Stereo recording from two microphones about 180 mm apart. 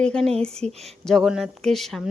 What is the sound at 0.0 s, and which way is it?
Speech, 5° left (ahead or behind).